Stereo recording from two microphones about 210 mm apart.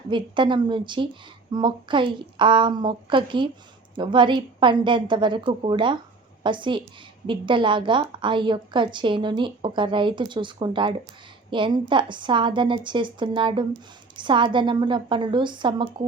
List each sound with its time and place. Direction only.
0.1 s a woman's voice: 20° right (ahead or behind)